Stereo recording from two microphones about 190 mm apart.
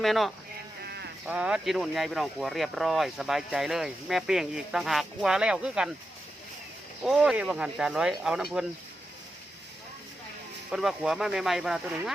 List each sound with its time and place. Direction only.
0.0 s speech: centre (ahead or behind)
0.9 s a sound: 60° right (ahead or behind)
1.3 s speech: 5° right (ahead or behind)
7.0 s speech: 5° right (ahead or behind)
10.7 s speech: centre (ahead or behind)